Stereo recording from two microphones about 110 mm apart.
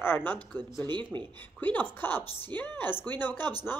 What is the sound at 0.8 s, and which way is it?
Speech, 45° right (ahead or behind).